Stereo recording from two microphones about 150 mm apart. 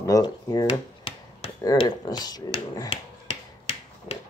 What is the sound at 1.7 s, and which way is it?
Speech, 30° left (ahead or behind).